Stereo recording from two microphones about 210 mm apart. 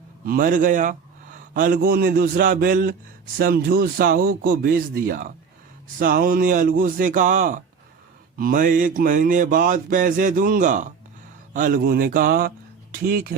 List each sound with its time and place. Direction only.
0.3 s speech: 40° right (ahead or behind)
6.0 s a sound: 45° right (ahead or behind)
11.5 s speech: 40° right (ahead or behind)